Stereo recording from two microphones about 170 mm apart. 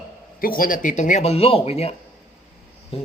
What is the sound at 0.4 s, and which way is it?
Speech, 55° left (ahead or behind).